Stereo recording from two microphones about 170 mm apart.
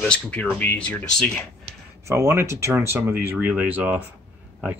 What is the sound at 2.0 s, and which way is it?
Speech, 15° right (ahead or behind).